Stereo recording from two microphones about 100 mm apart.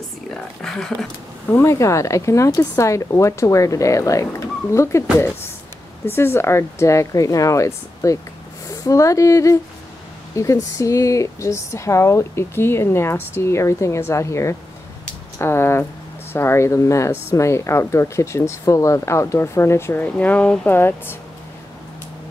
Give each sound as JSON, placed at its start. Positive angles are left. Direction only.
{"t": 0.3, "sound": "speech", "side_deg": 5}
{"t": 1.5, "sound": "speech", "side_deg": 30}
{"t": 6.0, "sound": "speech", "side_deg": 25}